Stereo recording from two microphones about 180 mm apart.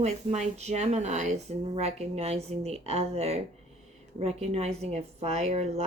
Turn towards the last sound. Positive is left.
turn(degrees=-35)  # may be behind; listen again after turning